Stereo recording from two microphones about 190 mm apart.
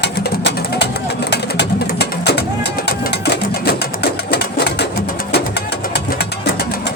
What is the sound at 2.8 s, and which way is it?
Sewing machine, 60° left (ahead or behind).